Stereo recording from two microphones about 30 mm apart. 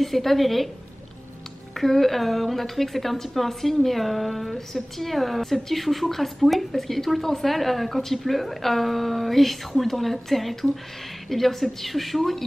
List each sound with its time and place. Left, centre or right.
0.0 s a woman's voice: centre
1.8 s a woman's voice: centre